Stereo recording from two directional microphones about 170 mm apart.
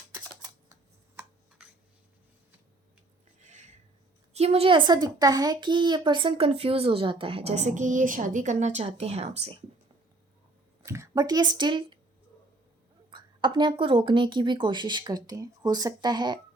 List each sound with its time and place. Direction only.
0.1 s typing: 20° right (ahead or behind)
3.4 s a sound: 45° right (ahead or behind)
4.4 s speech: 35° right (ahead or behind)
10.8 s a woman's voice: 15° right (ahead or behind)
13.1 s a woman's voice: 25° right (ahead or behind)